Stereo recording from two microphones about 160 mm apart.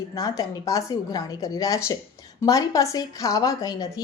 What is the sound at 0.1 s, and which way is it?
A woman's voice, 20° left (ahead or behind).